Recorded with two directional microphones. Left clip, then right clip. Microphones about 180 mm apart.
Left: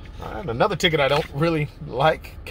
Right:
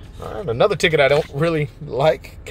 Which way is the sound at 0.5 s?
25° right (ahead or behind).